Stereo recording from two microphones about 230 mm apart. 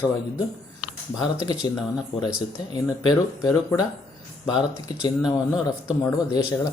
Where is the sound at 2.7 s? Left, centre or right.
Centre.